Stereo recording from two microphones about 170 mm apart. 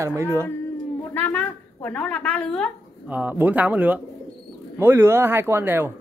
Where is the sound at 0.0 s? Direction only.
15° right (ahead or behind).